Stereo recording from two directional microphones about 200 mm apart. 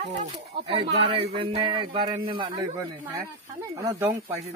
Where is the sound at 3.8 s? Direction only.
15° right (ahead or behind).